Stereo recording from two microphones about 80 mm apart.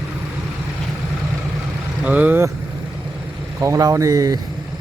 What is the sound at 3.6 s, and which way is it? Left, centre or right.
Speech, right.